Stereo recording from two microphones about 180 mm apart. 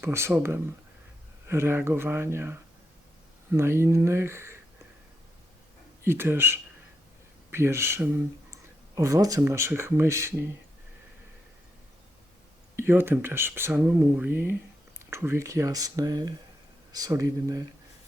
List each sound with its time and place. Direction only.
0.0 s speech: 15° right (ahead or behind)
6.1 s speech: 10° right (ahead or behind)
12.7 s speech: 15° right (ahead or behind)